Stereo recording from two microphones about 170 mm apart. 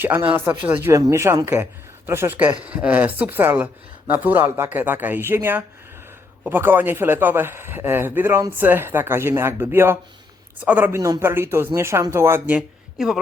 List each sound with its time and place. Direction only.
0.0 s speech: 10° right (ahead or behind)